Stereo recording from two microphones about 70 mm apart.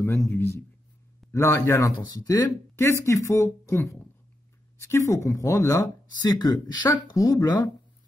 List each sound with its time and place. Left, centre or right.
0.3 s a woman's voice: left
1.8 s speech: left
2.7 s a woman's voice: left
6.2 s speech: left
7.2 s speech: left